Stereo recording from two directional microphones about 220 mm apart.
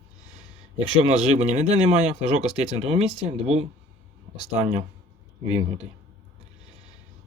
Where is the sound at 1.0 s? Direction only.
30° right (ahead or behind).